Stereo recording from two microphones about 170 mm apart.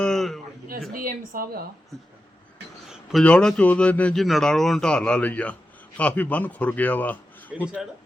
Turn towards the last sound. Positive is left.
turn(degrees=-5)  # may be behind; listen again after turning